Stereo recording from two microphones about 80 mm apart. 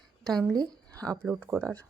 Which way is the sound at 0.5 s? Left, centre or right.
Right.